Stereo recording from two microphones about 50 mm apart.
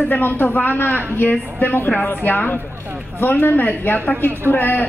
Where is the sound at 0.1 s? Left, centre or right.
Left.